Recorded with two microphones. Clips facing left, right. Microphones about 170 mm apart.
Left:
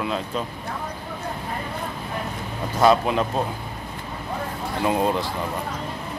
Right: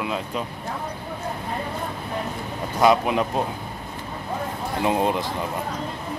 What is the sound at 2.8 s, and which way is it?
Speech, 15° right (ahead or behind).